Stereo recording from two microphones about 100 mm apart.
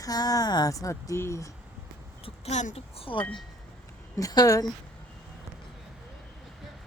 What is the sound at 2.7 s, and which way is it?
Speech, 65° left (ahead or behind).